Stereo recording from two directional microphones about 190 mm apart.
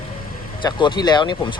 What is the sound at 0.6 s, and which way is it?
Speech, 25° left (ahead or behind).